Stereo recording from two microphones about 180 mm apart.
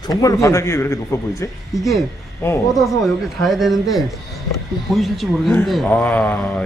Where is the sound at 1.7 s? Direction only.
Centre (ahead or behind).